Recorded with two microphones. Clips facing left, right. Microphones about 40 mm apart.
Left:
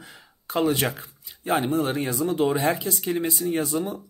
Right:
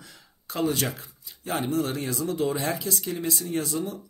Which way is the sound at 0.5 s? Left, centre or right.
Left.